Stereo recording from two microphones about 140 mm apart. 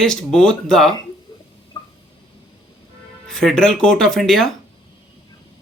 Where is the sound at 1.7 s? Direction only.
30° left (ahead or behind).